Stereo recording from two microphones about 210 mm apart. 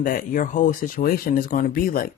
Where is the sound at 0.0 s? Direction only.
40° left (ahead or behind).